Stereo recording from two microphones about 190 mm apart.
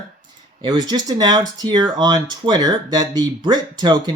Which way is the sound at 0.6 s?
20° right (ahead or behind).